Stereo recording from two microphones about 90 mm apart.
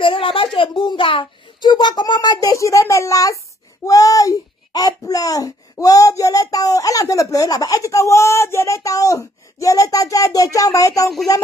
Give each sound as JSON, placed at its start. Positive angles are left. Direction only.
{"t": 0.0, "sound": "a woman's voice", "side_deg": 80}
{"t": 2.5, "sound": "a child's voice", "side_deg": 35}